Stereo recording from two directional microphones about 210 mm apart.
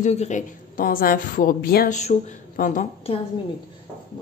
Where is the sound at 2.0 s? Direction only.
35° left (ahead or behind).